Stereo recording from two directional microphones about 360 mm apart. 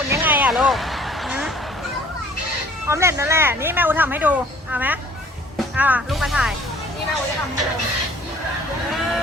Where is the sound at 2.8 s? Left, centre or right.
Centre.